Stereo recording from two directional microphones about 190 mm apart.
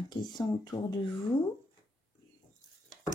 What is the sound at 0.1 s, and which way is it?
Speech, 20° left (ahead or behind).